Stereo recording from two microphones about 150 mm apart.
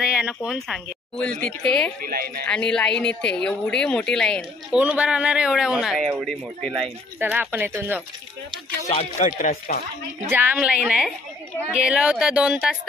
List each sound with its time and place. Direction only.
0.0 s a sound: 5° right (ahead or behind)
0.5 s speech: 5° left (ahead or behind)
2.0 s speech: 80° right
2.4 s speech: 5° left (ahead or behind)
4.6 s speech: 5° right (ahead or behind)
7.2 s a woman's voice: 15° right (ahead or behind)
8.9 s speech: 55° left (ahead or behind)
10.2 s a woman's voice: 15° right (ahead or behind)